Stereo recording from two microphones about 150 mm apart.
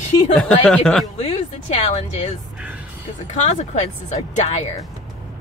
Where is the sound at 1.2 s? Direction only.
45° left (ahead or behind).